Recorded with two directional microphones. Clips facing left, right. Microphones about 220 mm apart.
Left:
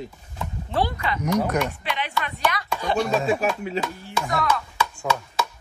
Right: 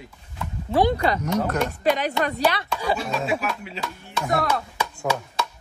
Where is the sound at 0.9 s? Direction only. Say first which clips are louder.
Right 1 dB; 40° right (ahead or behind).